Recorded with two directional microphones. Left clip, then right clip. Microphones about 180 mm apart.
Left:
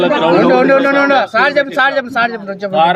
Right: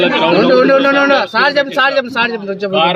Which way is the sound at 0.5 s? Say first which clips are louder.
Right 1 dB; 45° right (ahead or behind).